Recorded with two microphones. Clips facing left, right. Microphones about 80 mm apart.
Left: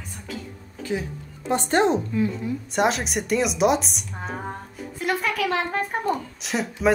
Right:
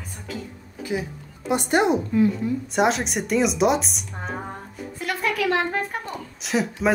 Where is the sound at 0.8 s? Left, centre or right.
Centre.